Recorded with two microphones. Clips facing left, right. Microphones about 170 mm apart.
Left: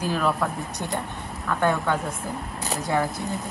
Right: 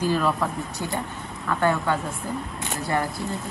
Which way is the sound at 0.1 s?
Centre (ahead or behind).